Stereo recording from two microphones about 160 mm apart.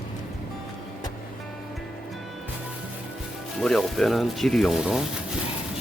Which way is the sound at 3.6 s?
Centre (ahead or behind).